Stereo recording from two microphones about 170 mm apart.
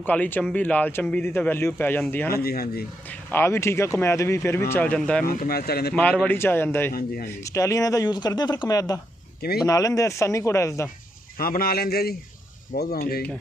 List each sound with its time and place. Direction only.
0.0 s speech: 10° left (ahead or behind)
2.3 s a man's voice: 65° left (ahead or behind)
3.1 s speech: 15° left (ahead or behind)
5.2 s a man's voice: 60° left (ahead or behind)
5.9 s speech: 5° left (ahead or behind)
11.3 s a man's voice: 60° left (ahead or behind)